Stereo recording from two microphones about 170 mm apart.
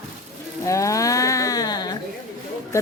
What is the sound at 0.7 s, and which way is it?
Speech, 20° left (ahead or behind).